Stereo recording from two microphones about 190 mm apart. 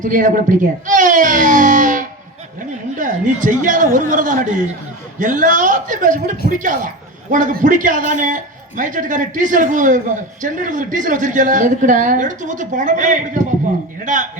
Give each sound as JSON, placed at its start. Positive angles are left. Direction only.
{"t": 0.0, "sound": "a man's voice", "side_deg": -45}